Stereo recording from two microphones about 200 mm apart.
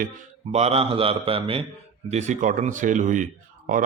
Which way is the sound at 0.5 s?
30° right (ahead or behind).